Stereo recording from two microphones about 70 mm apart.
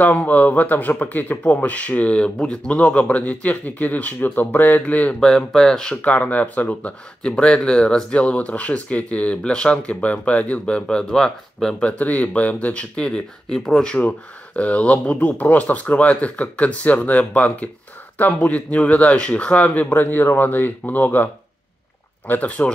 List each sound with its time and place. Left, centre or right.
0.0 s speech: left
5.2 s speech: centre
6.0 s speech: left
13.9 s speech: left
22.3 s speech: left